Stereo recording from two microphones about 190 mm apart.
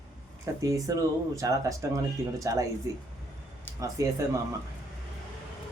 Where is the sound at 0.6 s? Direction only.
15° right (ahead or behind).